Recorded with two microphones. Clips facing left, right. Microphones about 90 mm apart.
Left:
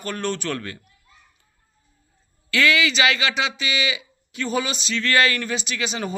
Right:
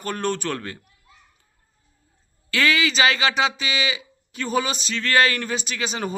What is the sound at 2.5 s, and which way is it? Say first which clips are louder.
Speech: left 1 dB; 35° right (ahead or behind).